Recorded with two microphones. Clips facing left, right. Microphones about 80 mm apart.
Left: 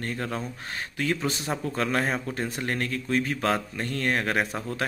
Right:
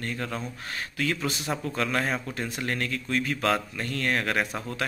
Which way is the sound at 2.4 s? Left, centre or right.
Left.